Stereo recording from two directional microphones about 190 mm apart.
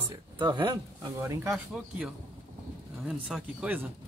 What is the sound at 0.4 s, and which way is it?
Speech, 25° right (ahead or behind).